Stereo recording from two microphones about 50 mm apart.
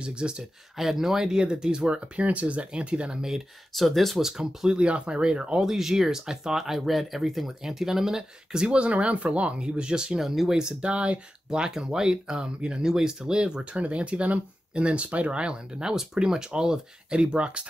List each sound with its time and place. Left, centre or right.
0.0 s speech: centre
0.4 s speech: centre
3.7 s speech: centre
4.7 s speech: right
5.6 s speech: centre
10.2 s speech: centre